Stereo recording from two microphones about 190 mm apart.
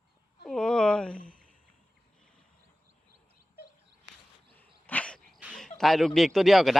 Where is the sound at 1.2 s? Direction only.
45° left (ahead or behind).